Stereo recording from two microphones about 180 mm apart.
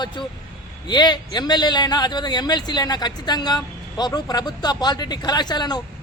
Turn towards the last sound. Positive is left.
turn(degrees=25)  # may be behind; listen again after turning